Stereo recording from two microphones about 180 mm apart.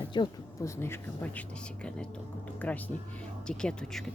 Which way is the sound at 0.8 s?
10° left (ahead or behind).